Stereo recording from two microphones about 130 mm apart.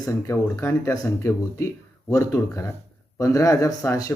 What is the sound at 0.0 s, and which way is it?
Speech, 25° left (ahead or behind).